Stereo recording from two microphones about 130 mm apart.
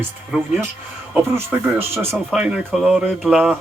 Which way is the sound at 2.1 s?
Centre (ahead or behind).